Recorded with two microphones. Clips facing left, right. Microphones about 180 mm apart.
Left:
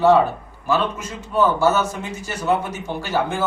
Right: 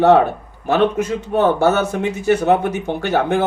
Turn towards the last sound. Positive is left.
turn(degrees=-60)  # may be behind; listen again after turning